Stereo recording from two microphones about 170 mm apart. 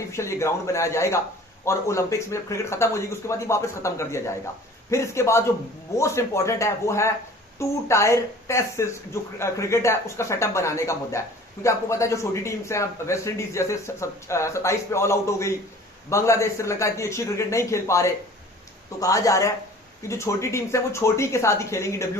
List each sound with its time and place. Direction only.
0.1 s speech: 15° left (ahead or behind)